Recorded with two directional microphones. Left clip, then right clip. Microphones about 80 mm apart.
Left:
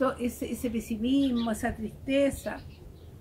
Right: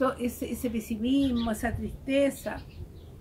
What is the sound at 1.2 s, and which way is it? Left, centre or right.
Speech, left.